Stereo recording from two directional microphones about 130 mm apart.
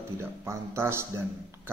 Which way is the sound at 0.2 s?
20° right (ahead or behind).